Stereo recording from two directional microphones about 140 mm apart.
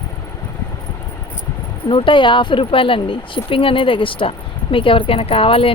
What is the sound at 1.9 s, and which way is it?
Speech, 40° left (ahead or behind).